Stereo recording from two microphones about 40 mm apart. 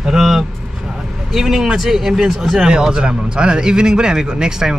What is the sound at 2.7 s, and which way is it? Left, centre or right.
Speech, centre.